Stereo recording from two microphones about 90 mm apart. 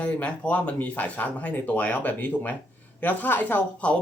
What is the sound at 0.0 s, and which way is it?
Speech, 15° left (ahead or behind).